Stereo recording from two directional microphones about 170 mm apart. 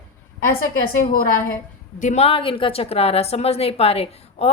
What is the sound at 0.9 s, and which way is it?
Speech, 60° left (ahead or behind).